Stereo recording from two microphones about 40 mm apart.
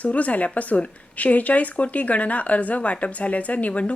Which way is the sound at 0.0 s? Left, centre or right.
Left.